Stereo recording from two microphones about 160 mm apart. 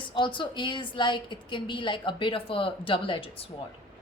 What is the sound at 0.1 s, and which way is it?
A woman's voice, 30° left (ahead or behind).